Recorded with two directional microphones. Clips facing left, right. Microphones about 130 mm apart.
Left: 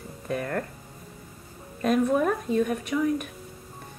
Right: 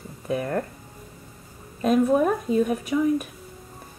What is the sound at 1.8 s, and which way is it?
A woman's voice, 5° right (ahead or behind).